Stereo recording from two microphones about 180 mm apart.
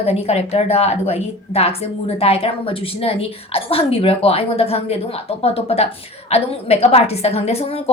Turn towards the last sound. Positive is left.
turn(degrees=35)  # may be behind; listen again after turning